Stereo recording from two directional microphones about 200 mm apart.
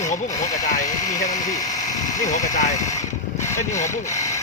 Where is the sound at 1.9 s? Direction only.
15° left (ahead or behind).